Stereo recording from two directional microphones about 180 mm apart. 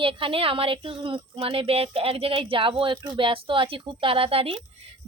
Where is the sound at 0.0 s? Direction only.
30° right (ahead or behind).